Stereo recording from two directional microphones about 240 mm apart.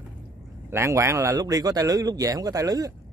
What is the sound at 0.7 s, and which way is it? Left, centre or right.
Speech, centre.